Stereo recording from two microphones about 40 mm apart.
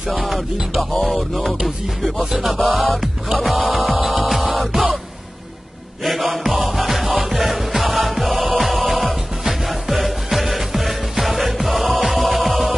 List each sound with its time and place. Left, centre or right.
0.1 s music: centre
2.3 s a sound: centre
3.3 s music: centre
6.0 s music: centre